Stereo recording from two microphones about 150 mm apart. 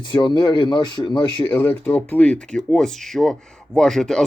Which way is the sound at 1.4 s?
10° left (ahead or behind).